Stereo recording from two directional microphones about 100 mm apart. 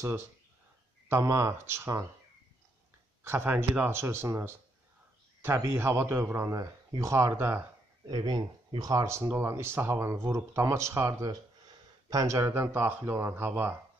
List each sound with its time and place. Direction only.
1.0 s speech: 30° right (ahead or behind)
3.3 s speech: 25° right (ahead or behind)
8.1 s speech: 45° right (ahead or behind); by 13.7 s 25° right (ahead or behind)